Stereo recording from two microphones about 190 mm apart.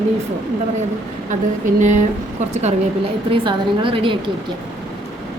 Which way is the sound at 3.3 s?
25° right (ahead or behind).